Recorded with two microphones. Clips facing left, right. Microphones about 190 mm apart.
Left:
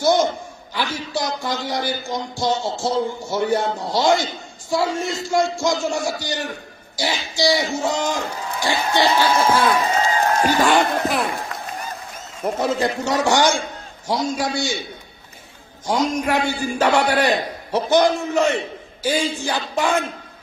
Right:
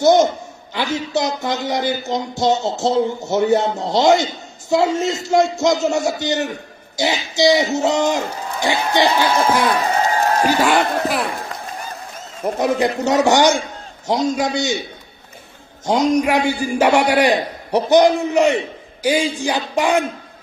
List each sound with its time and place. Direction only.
0.0 s a man's voice: 20° right (ahead or behind); by 11.2 s 5° right (ahead or behind)
12.5 s speech: 15° right (ahead or behind)
15.8 s a man's voice: 20° right (ahead or behind)